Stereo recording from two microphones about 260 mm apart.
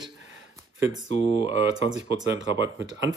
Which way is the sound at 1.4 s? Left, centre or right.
Right.